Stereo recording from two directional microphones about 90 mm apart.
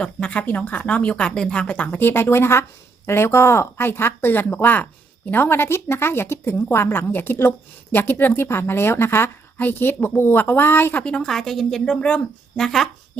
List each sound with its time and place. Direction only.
0.0 s speech: 15° left (ahead or behind)
11.0 s speech: 10° left (ahead or behind)